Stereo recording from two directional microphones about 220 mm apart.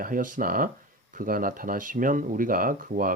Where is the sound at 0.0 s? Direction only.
40° right (ahead or behind).